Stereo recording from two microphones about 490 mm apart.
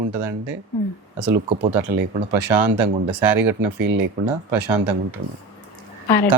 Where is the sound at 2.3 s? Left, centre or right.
Right.